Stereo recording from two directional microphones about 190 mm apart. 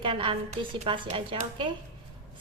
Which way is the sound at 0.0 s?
25° right (ahead or behind).